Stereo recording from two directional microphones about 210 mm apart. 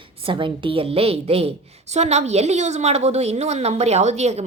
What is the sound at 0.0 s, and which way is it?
A woman's voice, 25° right (ahead or behind).